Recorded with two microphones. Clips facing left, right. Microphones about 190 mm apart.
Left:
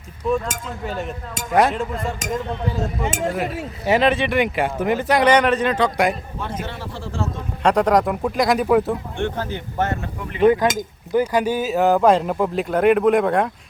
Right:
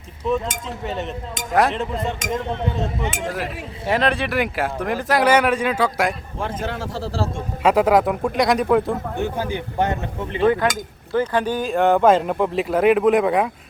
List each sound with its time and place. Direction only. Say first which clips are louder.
0.9 s speech: right 1 dB; centre (ahead or behind)
6.6 s a man's voice: right 4 dB; 45° right (ahead or behind)
7.6 s speech: right 1 dB; 5° right (ahead or behind)
10.4 s speech: left 3 dB; 20° left (ahead or behind); by 13.5 s centre (ahead or behind)